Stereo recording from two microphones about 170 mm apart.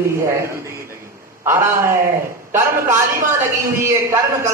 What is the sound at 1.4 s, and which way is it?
A man's voice, 15° right (ahead or behind).